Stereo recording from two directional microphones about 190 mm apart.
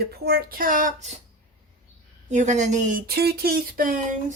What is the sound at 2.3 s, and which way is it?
Speech, 40° right (ahead or behind).